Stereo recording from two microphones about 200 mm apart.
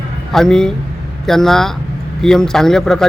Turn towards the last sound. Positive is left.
turn(degrees=0)  # may be behind; listen again after turning